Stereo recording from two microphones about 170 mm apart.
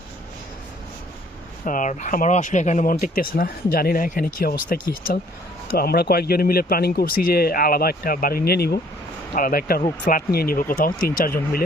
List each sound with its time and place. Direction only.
1.6 s speech: 50° left (ahead or behind); by 8.8 s 65° left (ahead or behind)
9.3 s speech: 55° left (ahead or behind)